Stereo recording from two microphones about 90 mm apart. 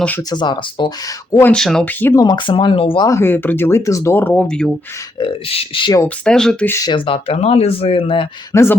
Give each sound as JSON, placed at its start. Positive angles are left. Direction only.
{"t": 0.2, "sound": "speech", "side_deg": 50}
{"t": 1.5, "sound": "speech", "side_deg": 5}
{"t": 1.8, "sound": "speech", "side_deg": 20}
{"t": 2.1, "sound": "speech", "side_deg": 50}
{"t": 3.1, "sound": "speech", "side_deg": 25}
{"t": 3.8, "sound": "speech", "side_deg": 35}
{"t": 4.1, "sound": "speech", "side_deg": 20}
{"t": 5.1, "sound": "speech", "side_deg": 80}
{"t": 6.1, "sound": "speech", "side_deg": 10}
{"t": 6.9, "sound": "speech", "side_deg": 80}
{"t": 8.5, "sound": "speech", "side_deg": 35}